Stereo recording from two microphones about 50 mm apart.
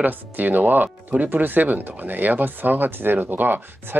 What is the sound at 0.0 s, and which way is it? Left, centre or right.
Speech, right.